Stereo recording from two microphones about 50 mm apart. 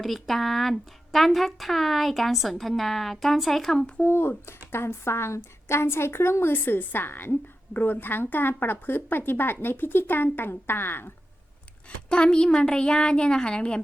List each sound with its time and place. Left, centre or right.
0.0 s a woman's voice: centre
4.0 s speech: left
12.0 s a woman's voice: centre